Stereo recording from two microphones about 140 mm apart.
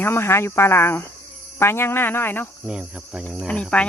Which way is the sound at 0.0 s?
15° left (ahead or behind).